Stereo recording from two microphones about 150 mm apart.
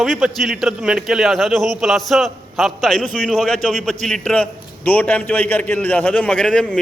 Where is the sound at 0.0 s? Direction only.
Centre (ahead or behind).